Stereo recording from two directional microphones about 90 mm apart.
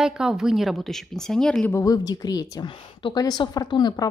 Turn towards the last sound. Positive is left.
turn(degrees=50)  # may be behind; listen again after turning